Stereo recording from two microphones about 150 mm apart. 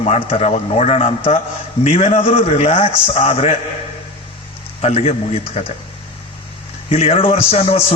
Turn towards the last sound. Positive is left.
turn(degrees=40)  # may be behind; listen again after turning